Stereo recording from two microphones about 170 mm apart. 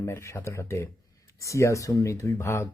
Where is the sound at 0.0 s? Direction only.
15° left (ahead or behind).